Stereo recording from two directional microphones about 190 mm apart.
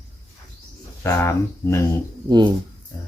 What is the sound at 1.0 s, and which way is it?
Speech, 15° left (ahead or behind).